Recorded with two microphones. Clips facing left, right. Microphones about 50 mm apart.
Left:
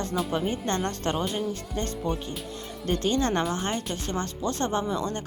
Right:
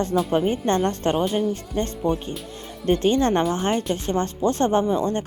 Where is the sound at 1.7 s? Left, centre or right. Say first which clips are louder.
Right 6 dB; right.